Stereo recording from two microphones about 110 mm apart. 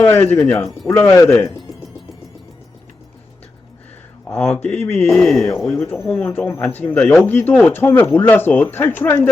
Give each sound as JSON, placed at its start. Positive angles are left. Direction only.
{"t": 0.0, "sound": "speech", "side_deg": 15}
{"t": 0.9, "sound": "speech", "side_deg": 25}
{"t": 4.3, "sound": "speech", "side_deg": 5}
{"t": 5.0, "sound": "speech", "side_deg": 0}
{"t": 5.7, "sound": "speech", "side_deg": 25}
{"t": 6.1, "sound": "speech", "side_deg": 10}